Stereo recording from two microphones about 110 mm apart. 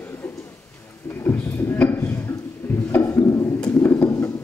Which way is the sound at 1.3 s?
15° left (ahead or behind).